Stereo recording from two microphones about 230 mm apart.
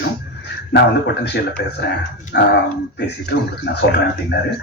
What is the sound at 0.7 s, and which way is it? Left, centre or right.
Speech, left.